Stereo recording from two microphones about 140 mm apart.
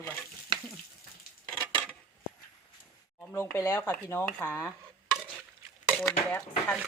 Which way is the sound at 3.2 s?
15° left (ahead or behind).